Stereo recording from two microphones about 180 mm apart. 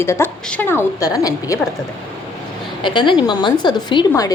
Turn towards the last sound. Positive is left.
turn(degrees=20)  # may be behind; listen again after turning